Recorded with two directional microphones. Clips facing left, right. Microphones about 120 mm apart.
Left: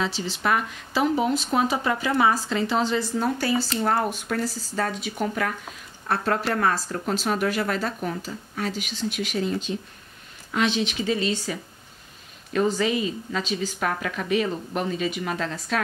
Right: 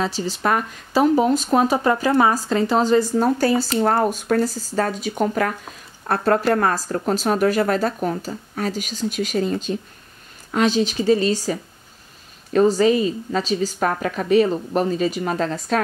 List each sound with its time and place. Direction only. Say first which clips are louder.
0.0 s speech: right 4 dB; 40° right (ahead or behind)
12.5 s speech: right 7 dB; 40° right (ahead or behind)